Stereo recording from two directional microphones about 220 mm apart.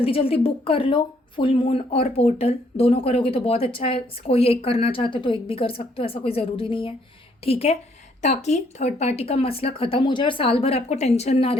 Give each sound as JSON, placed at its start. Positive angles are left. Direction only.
{"t": 0.0, "sound": "speech", "side_deg": 25}